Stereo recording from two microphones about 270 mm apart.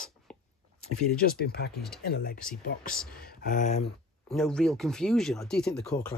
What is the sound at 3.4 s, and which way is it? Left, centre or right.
Speech, left.